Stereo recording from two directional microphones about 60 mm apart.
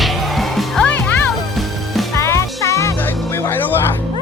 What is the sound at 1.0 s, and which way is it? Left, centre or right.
Music, left.